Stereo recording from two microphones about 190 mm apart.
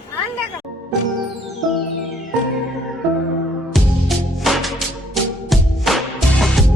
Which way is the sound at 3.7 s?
Centre (ahead or behind).